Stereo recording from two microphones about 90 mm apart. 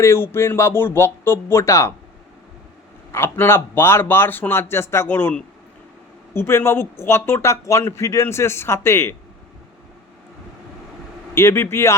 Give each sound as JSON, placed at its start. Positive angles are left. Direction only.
{"t": 0.0, "sound": "speech", "side_deg": 25}
{"t": 3.1, "sound": "speech", "side_deg": 30}
{"t": 6.3, "sound": "speech", "side_deg": 25}
{"t": 11.3, "sound": "speech", "side_deg": 30}